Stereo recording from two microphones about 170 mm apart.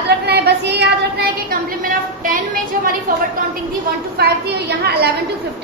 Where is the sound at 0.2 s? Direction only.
75° right (ahead or behind).